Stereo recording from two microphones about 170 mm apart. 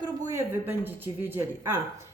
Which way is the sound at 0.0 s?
20° right (ahead or behind).